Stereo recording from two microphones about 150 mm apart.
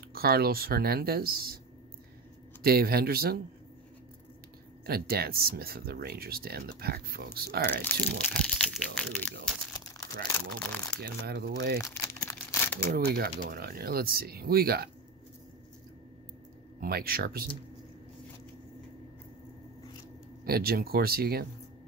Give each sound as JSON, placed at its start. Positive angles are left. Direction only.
{"t": 0.1, "sound": "speech", "side_deg": -90}
{"t": 2.6, "sound": "speech", "side_deg": -90}
{"t": 4.8, "sound": "speech", "side_deg": -90}
{"t": 7.7, "sound": "speech", "side_deg": 10}
{"t": 10.6, "sound": "speech", "side_deg": 5}
{"t": 11.0, "sound": "speech", "side_deg": -90}
{"t": 11.8, "sound": "crumpling", "side_deg": 20}
{"t": 12.9, "sound": "speech", "side_deg": -90}
{"t": 16.8, "sound": "speech", "side_deg": -80}
{"t": 20.4, "sound": "speech", "side_deg": -90}